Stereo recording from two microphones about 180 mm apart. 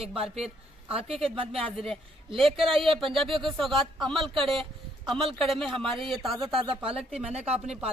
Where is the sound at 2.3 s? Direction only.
30° right (ahead or behind).